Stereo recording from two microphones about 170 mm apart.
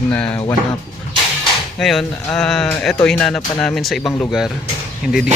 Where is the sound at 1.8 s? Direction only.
Centre (ahead or behind).